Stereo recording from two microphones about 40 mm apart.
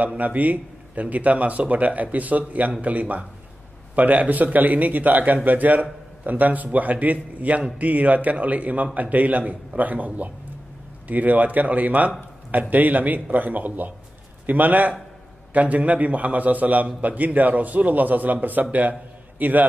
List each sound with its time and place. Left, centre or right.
0.2 s a man's voice: right